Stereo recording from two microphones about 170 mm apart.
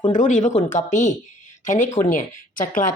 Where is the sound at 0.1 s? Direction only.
50° left (ahead or behind).